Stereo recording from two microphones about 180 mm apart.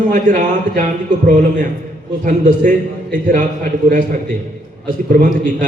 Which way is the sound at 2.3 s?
45° right (ahead or behind).